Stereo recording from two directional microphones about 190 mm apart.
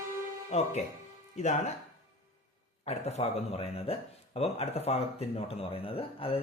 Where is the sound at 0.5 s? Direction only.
35° left (ahead or behind).